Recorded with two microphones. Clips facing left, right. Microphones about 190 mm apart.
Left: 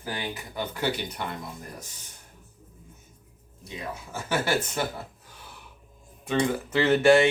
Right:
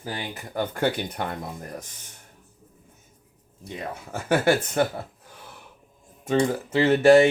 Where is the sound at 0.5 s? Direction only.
50° right (ahead or behind).